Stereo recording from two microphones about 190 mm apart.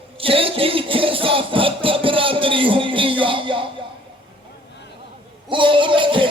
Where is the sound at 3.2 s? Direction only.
25° right (ahead or behind).